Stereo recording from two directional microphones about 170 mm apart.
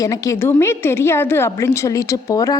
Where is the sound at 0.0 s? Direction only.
20° left (ahead or behind).